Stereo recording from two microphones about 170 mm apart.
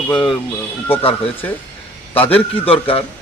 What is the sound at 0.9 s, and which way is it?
Speech, 35° left (ahead or behind).